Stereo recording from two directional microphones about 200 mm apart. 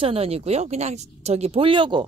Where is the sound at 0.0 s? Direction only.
30° right (ahead or behind).